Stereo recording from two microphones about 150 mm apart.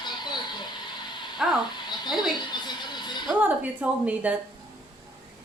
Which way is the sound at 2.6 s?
30° left (ahead or behind).